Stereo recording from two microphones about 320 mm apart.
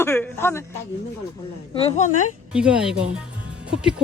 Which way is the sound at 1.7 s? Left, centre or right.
Centre.